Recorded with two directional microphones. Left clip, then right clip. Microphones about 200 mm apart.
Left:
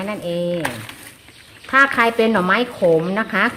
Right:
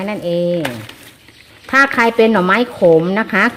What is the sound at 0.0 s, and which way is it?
Speech, 35° right (ahead or behind).